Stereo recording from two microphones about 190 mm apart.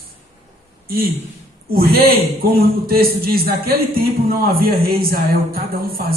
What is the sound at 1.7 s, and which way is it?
A man's voice, 50° right (ahead or behind).